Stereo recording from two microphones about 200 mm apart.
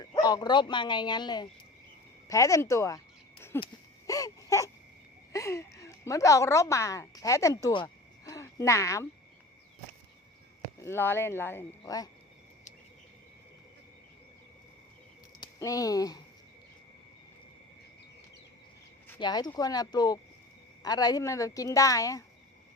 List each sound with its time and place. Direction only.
0.0 s a woman's voice: 20° left (ahead or behind)
3.6 s a sound: 15° left (ahead or behind)
5.3 s a woman's voice: 15° left (ahead or behind)
10.8 s a woman's voice: 10° left (ahead or behind)
15.4 s speech: 15° left (ahead or behind)
19.2 s a woman's voice: 20° left (ahead or behind)